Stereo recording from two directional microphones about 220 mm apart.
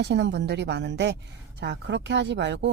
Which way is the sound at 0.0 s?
50° right (ahead or behind).